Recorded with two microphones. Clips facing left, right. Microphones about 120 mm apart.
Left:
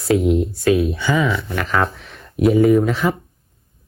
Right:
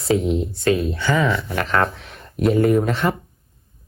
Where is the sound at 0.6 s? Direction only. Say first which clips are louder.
Left 1 dB; 5° left (ahead or behind).